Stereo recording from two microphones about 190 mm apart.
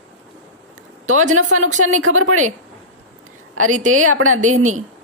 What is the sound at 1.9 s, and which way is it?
Speech, 90° right.